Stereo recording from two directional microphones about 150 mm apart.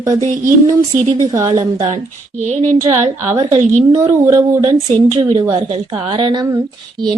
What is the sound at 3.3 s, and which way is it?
A woman's voice, 25° right (ahead or behind).